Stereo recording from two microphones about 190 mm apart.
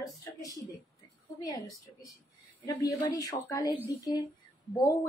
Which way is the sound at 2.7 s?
15° left (ahead or behind).